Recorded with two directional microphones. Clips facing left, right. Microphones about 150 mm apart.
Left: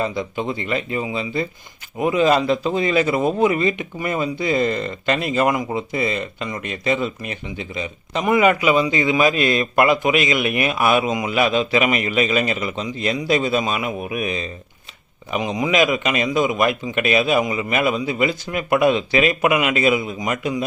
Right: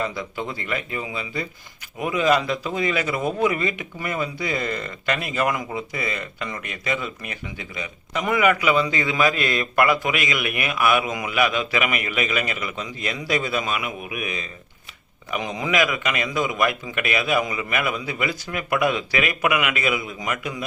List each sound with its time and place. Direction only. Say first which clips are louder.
0.0 s a man's voice: left 4 dB; 20° left (ahead or behind)
15.3 s a man's voice: left 4 dB; 20° left (ahead or behind)